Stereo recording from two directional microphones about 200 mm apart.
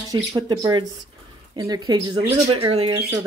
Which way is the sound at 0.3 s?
20° right (ahead or behind).